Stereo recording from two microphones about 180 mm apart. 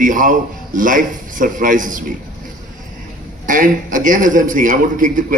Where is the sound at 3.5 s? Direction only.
45° right (ahead or behind).